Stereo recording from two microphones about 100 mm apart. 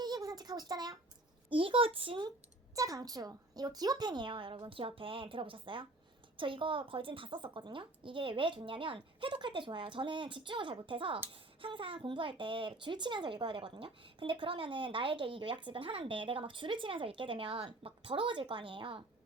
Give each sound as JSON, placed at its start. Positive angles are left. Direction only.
{"t": 0.0, "sound": "a sound", "side_deg": -40}
{"t": 1.5, "sound": "speech", "side_deg": -60}
{"t": 2.7, "sound": "a woman's voice", "side_deg": -35}